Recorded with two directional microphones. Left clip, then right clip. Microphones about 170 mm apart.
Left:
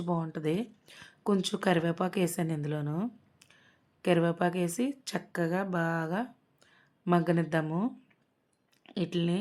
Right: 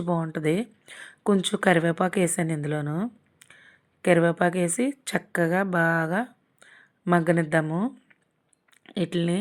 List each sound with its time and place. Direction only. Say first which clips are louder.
0.0 s speech: right 6 dB; 25° right (ahead or behind)
3.4 s a sound: right 11 dB; 50° left (ahead or behind)
4.0 s speech: right 7 dB; 25° right (ahead or behind)
8.8 s speech: right 5 dB; 20° right (ahead or behind)